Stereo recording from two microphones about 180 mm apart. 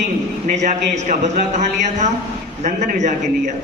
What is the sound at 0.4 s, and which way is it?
Speech, 40° right (ahead or behind).